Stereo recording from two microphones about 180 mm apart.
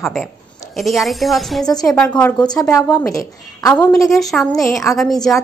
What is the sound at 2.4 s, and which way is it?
Speech, 20° left (ahead or behind).